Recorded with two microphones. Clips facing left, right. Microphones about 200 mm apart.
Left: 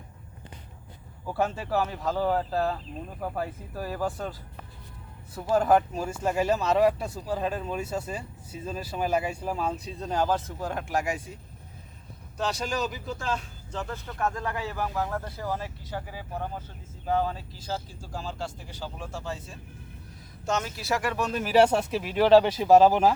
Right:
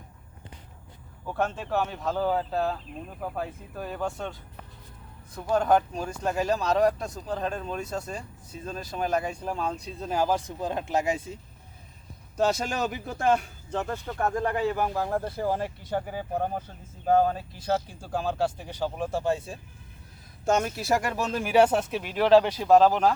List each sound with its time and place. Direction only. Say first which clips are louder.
1.3 s speech: left 1 dB; 5° left (ahead or behind); by 11.3 s 25° right (ahead or behind)
12.4 s speech: right 4 dB; 45° right (ahead or behind)
14.9 s speech: right 3 dB; 30° right (ahead or behind)
15.4 s speech: right 5 dB; 50° right (ahead or behind)
21.4 s speech: even; 10° right (ahead or behind); by 23.1 s 5° left (ahead or behind)